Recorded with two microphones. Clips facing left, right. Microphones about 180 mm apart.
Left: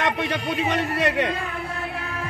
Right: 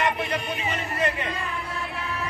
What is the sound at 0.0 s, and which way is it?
A man's voice, 90° left.